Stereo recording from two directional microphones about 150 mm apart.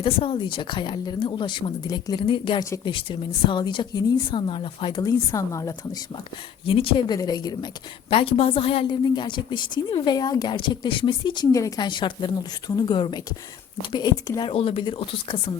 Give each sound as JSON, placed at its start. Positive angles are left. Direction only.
{"t": 0.0, "sound": "a woman's voice", "side_deg": 40}
{"t": 6.7, "sound": "speech", "side_deg": 35}
{"t": 8.1, "sound": "a woman's voice", "side_deg": 40}
{"t": 14.5, "sound": "a woman's voice", "side_deg": 40}